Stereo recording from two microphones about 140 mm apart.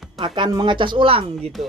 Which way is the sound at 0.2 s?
35° right (ahead or behind).